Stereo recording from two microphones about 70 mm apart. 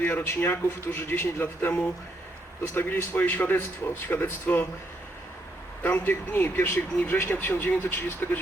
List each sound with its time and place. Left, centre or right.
0.0 s a man's voice: left
2.7 s speech: left
5.8 s speech: left